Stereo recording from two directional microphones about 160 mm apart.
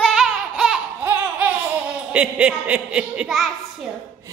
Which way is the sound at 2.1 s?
5° right (ahead or behind).